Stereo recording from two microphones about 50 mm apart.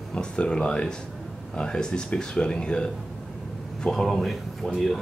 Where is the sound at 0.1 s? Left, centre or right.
Centre.